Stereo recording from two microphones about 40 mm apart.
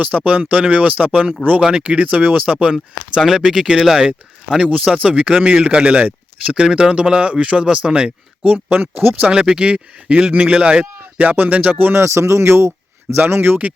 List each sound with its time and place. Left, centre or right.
0.0 s speech: right
2.7 s speech: centre
4.7 s speech: right
8.7 s music: right
9.3 s speech: right
11.2 s music: right
11.9 s speech: right
13.1 s speech: right